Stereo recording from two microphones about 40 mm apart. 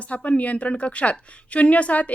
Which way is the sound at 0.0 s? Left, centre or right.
Left.